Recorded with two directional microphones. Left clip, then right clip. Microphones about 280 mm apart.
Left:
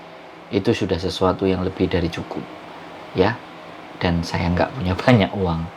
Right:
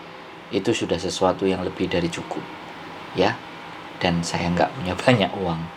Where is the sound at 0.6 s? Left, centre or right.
Left.